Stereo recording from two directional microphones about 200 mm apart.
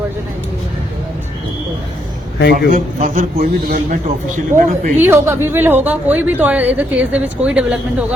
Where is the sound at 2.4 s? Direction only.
55° left (ahead or behind).